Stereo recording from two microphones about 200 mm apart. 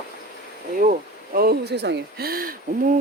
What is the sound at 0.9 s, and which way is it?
Speech, 50° right (ahead or behind).